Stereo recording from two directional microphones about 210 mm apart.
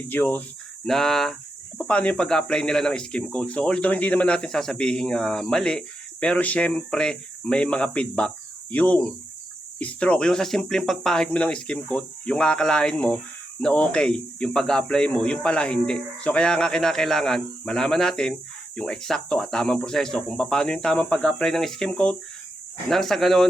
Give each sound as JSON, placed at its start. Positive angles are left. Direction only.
{"t": 0.1, "sound": "speech", "side_deg": 10}